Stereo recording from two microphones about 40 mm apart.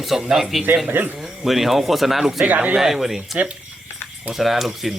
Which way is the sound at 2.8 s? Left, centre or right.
Centre.